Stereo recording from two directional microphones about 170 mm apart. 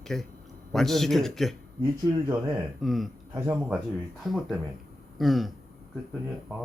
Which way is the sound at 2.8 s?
Centre (ahead or behind).